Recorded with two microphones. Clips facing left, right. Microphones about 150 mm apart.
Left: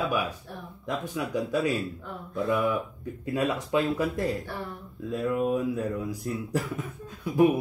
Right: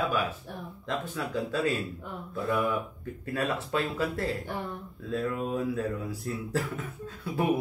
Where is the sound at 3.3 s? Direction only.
15° left (ahead or behind).